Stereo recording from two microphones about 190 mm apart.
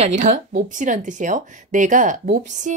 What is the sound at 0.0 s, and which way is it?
A woman's voice, 40° right (ahead or behind).